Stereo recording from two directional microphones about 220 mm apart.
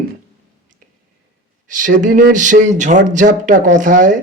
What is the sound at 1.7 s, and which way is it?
A man's voice, 35° right (ahead or behind).